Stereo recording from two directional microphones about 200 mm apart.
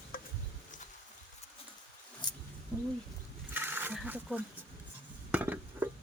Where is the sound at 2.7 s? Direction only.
15° left (ahead or behind).